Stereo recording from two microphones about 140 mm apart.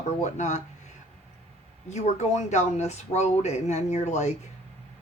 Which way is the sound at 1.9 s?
55° left (ahead or behind).